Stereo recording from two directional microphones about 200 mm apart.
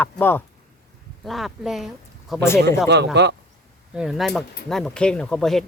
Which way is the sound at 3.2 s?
55° right (ahead or behind).